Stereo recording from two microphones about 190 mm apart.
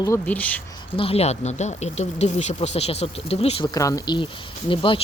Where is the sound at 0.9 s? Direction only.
30° left (ahead or behind).